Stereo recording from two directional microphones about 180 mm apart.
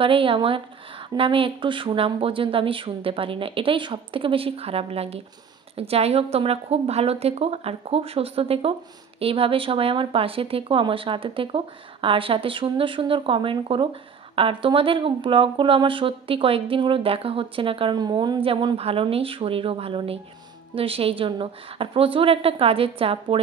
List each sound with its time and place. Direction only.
0.0 s speech: 30° right (ahead or behind)